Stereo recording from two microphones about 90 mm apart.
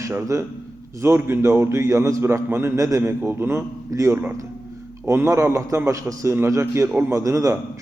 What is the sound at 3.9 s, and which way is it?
Speech, 35° right (ahead or behind).